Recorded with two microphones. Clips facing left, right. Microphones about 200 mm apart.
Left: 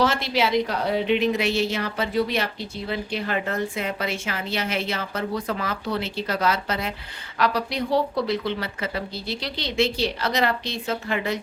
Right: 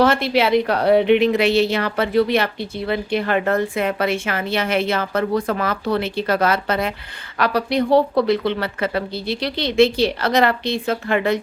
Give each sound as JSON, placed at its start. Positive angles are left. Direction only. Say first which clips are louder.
{"t": 0.0, "sound": "a woman's voice", "louder": "right 6 dB", "side_deg": -60}